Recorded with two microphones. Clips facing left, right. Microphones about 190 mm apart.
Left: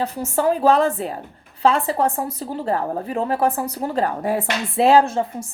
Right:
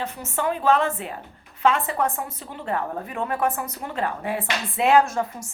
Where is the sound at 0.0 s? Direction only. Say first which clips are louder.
Left 6 dB; 35° left (ahead or behind).